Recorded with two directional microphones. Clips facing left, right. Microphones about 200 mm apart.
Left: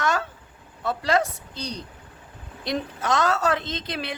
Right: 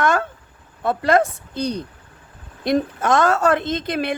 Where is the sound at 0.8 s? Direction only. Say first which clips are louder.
Right 6 dB; 55° right (ahead or behind).